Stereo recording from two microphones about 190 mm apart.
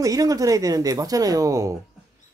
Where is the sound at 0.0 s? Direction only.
20° right (ahead or behind).